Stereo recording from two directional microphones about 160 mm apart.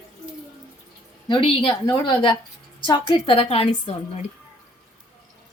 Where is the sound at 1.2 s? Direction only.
30° left (ahead or behind).